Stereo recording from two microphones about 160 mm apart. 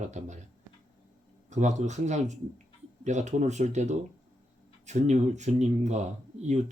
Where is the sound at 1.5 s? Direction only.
50° right (ahead or behind).